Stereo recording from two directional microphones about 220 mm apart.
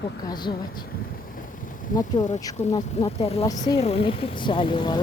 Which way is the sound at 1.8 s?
40° left (ahead or behind).